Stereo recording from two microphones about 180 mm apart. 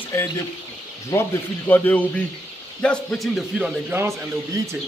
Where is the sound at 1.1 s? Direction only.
10° left (ahead or behind); by 4.3 s 10° right (ahead or behind).